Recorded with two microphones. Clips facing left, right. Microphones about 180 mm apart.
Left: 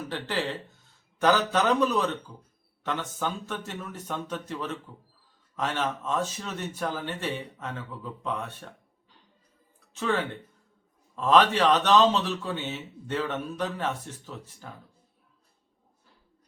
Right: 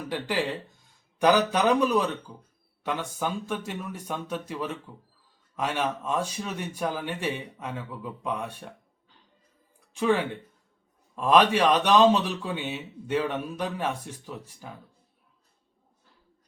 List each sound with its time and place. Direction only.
0.1 s a man's voice: 10° right (ahead or behind)
9.9 s a man's voice: 15° right (ahead or behind)